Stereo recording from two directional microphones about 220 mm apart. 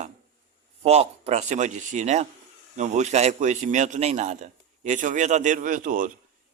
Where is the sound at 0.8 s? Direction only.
30° right (ahead or behind).